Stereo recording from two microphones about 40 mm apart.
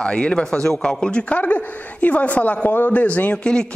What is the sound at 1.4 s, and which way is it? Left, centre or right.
A man's voice, left.